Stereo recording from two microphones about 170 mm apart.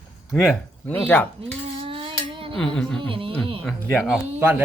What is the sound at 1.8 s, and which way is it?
Dishes, 30° right (ahead or behind).